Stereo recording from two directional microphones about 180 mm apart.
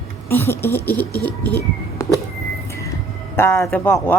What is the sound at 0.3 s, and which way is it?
Speech, 10° left (ahead or behind).